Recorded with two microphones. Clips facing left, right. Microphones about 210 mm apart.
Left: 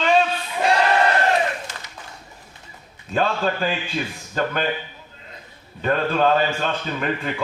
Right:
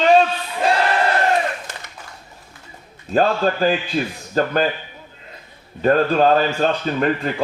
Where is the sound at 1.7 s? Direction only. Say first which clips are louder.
Right 2 dB; 55° right (ahead or behind).